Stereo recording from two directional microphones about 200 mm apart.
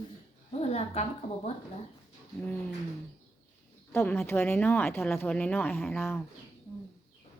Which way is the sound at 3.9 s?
10° left (ahead or behind).